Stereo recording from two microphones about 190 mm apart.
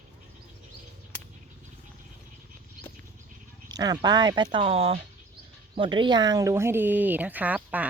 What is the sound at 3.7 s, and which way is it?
Speech, 20° right (ahead or behind).